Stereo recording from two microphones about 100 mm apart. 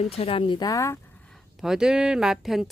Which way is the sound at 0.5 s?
35° left (ahead or behind).